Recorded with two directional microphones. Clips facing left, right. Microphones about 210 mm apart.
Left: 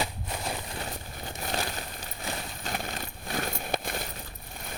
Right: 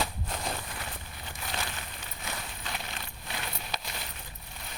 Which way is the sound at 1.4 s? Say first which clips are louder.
Left 5 dB; 40° left (ahead or behind).